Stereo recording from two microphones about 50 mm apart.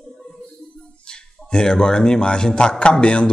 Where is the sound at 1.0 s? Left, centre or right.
Centre.